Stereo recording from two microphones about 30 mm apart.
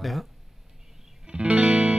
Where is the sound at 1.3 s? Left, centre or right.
Right.